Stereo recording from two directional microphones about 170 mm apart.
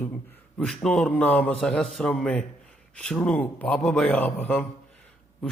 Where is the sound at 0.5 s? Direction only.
5° left (ahead or behind).